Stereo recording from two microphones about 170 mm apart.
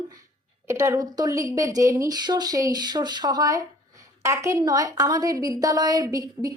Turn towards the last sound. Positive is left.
turn(degrees=-20)  # may be behind; listen again after turning